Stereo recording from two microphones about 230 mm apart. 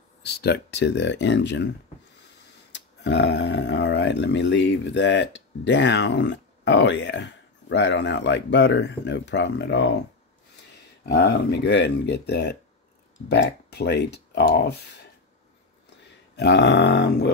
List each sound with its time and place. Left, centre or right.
0.2 s speech: left
2.7 s speech: left
11.1 s speech: left
16.3 s speech: left